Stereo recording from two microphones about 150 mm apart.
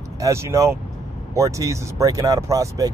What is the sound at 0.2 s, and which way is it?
Speech, 20° right (ahead or behind).